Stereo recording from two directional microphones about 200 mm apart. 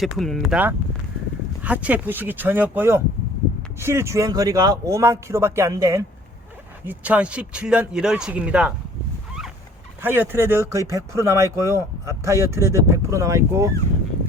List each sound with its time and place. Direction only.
0.0 s speech: centre (ahead or behind)
10.0 s speech: 10° right (ahead or behind)